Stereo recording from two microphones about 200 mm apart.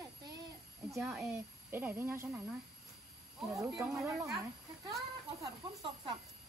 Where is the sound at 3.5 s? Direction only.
15° right (ahead or behind).